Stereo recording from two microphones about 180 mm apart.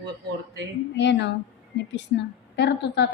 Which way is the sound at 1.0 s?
75° left (ahead or behind).